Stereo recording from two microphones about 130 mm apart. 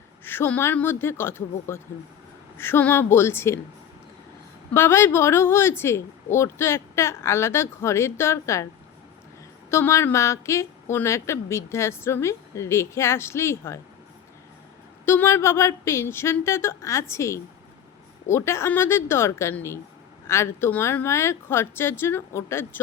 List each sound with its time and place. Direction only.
0.3 s a woman's voice: 15° left (ahead or behind)
4.7 s a woman's voice: 20° left (ahead or behind)
9.6 s a woman's voice: 20° left (ahead or behind)
15.0 s a woman's voice: 20° left (ahead or behind)